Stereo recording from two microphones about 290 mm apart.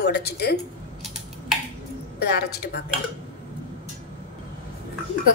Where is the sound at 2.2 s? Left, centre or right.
Left.